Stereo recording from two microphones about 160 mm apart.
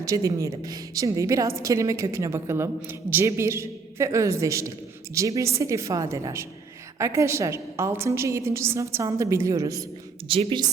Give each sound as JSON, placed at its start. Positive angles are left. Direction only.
{"t": 0.0, "sound": "a woman's voice", "side_deg": -20}
{"t": 10.2, "sound": "a woman's voice", "side_deg": -35}